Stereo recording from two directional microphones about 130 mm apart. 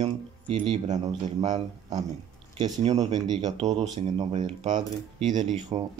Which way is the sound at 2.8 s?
60° right (ahead or behind).